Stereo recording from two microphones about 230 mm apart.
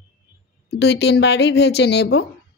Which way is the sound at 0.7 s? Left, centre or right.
Left.